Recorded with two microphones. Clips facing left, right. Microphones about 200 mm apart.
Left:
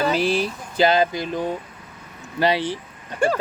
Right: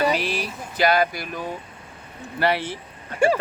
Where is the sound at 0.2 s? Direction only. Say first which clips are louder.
Left 6 dB; 30° left (ahead or behind).